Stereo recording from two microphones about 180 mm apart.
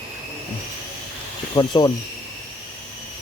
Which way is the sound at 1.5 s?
20° left (ahead or behind).